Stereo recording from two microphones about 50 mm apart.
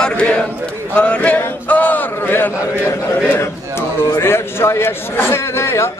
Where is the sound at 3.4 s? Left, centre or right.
Left.